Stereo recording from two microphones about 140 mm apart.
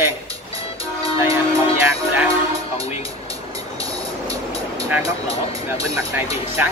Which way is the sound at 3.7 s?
25° right (ahead or behind).